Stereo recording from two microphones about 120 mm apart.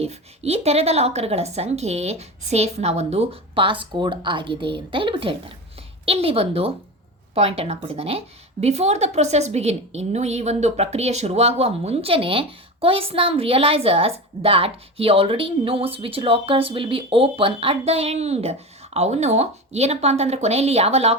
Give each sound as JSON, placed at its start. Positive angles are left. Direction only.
{"t": 0.0, "sound": "a woman's voice", "side_deg": -60}